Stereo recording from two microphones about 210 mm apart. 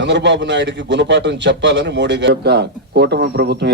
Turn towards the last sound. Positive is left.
turn(degrees=-50)  # may be behind; listen again after turning